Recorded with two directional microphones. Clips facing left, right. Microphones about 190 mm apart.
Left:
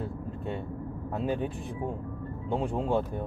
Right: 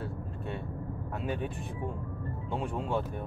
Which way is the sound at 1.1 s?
30° left (ahead or behind).